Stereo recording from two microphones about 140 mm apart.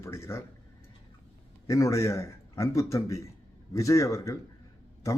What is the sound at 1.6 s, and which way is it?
Speech, 20° left (ahead or behind).